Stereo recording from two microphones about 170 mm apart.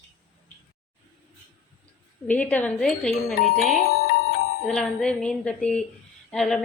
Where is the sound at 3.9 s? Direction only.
65° left (ahead or behind).